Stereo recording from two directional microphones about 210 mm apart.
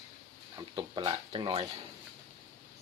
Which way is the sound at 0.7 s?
20° right (ahead or behind).